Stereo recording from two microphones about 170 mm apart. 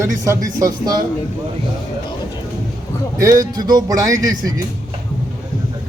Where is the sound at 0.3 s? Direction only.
20° right (ahead or behind).